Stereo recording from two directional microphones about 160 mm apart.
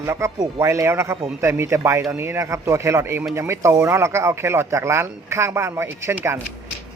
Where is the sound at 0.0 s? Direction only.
15° right (ahead or behind).